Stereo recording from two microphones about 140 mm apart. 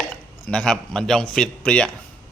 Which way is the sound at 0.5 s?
5° left (ahead or behind).